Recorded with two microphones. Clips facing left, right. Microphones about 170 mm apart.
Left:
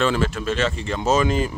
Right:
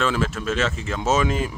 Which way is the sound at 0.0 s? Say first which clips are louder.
Left 2 dB; centre (ahead or behind).